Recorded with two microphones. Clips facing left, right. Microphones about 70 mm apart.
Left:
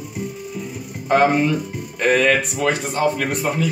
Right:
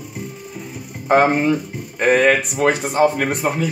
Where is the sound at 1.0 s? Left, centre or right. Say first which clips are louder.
Right 1 dB; right.